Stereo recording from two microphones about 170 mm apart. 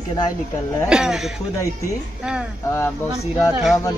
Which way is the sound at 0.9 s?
5° right (ahead or behind).